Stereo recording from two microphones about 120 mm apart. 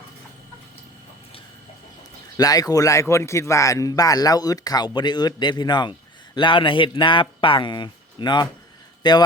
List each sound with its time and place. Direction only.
2.4 s speech: 30° left (ahead or behind)